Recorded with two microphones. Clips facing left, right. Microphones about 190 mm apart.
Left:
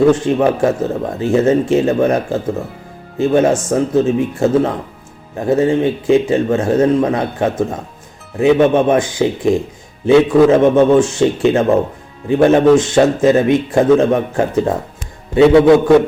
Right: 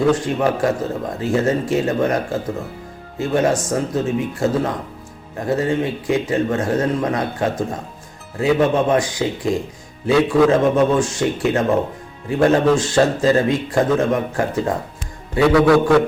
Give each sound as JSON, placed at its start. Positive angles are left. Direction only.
{"t": 0.1, "sound": "speech", "side_deg": 25}